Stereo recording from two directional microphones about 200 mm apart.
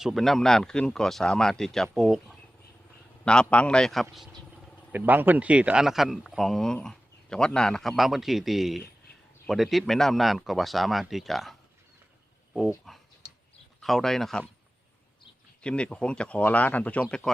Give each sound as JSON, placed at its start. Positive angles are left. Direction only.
{"t": 0.0, "sound": "speech", "side_deg": 0}
{"t": 4.9, "sound": "speech", "side_deg": -10}
{"t": 12.5, "sound": "speech", "side_deg": 0}
{"t": 15.6, "sound": "speech", "side_deg": 5}